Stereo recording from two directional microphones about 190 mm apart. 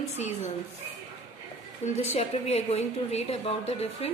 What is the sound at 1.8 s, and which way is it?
A woman's voice, 35° left (ahead or behind).